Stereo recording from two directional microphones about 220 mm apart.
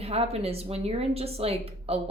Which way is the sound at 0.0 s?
25° right (ahead or behind).